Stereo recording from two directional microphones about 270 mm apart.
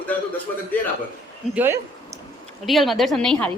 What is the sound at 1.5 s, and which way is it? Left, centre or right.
A woman's voice, centre.